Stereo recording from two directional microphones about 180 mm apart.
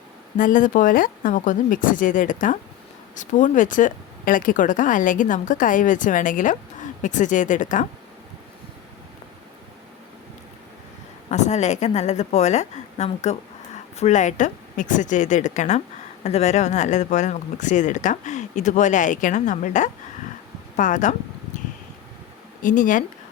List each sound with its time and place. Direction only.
0.3 s speech: 45° left (ahead or behind)
11.3 s a woman's voice: 40° left (ahead or behind)
22.6 s speech: 45° left (ahead or behind)